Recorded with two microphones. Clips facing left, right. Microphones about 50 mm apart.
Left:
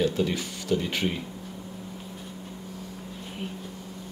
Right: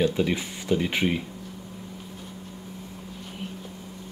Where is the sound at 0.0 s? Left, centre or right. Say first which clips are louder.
Right 2 dB; centre.